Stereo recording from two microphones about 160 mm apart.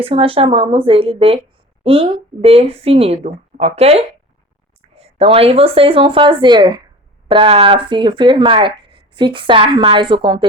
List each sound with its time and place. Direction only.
0.0 s speech: 35° right (ahead or behind)